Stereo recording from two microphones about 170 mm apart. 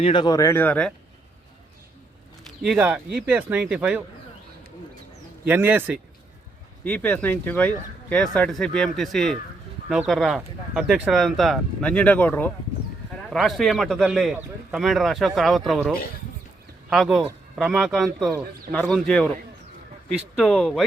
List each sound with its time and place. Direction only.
0.0 s speech: 25° left (ahead or behind); by 0.9 s 5° left (ahead or behind)
2.6 s speech: 5° right (ahead or behind)
5.5 s speech: 10° right (ahead or behind)
6.8 s speech: 10° left (ahead or behind)
13.3 s speech: centre (ahead or behind)
20.3 s speech: 5° left (ahead or behind)